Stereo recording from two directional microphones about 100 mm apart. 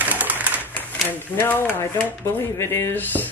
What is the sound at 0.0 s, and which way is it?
Bird, 15° right (ahead or behind).